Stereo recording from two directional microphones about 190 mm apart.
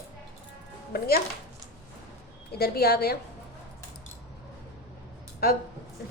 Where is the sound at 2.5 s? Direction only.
55° left (ahead or behind).